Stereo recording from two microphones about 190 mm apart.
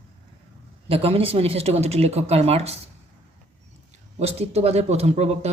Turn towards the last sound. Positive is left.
turn(degrees=-35)  # may be behind; listen again after turning